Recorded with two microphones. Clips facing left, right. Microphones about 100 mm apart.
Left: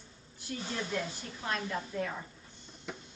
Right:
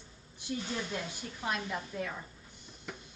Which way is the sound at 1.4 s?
10° right (ahead or behind).